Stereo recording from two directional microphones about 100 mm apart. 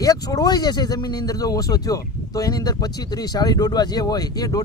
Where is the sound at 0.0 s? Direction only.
35° left (ahead or behind).